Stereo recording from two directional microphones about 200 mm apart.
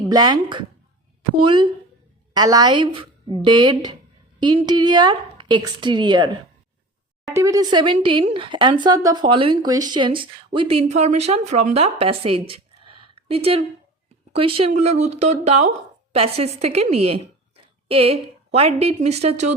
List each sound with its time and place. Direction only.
0.1 s a woman's voice: 20° right (ahead or behind)
7.3 s a woman's voice: 15° right (ahead or behind); by 19.5 s 35° right (ahead or behind)